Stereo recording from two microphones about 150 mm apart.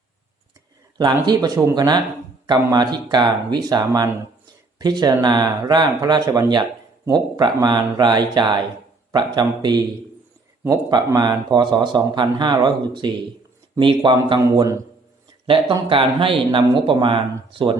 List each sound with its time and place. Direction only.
1.2 s speech: 25° right (ahead or behind)
15.4 s speech: 35° right (ahead or behind)